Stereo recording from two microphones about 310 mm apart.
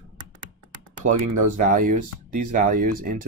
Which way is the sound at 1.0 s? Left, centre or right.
Right.